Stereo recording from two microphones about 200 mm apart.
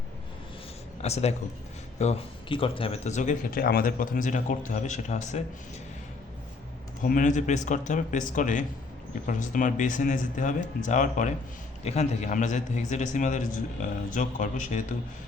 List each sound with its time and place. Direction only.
1.0 s speech: 30° left (ahead or behind)
7.0 s speech: 40° left (ahead or behind)